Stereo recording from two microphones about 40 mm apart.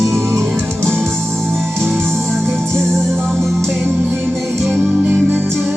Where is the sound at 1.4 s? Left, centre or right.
Right.